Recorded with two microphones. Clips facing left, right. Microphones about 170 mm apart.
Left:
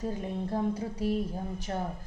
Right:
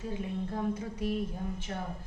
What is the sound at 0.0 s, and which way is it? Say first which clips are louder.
A woman's voice: left 2 dB; 40° left (ahead or behind).